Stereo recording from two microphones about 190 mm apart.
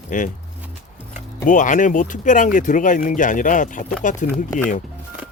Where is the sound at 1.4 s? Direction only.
40° left (ahead or behind).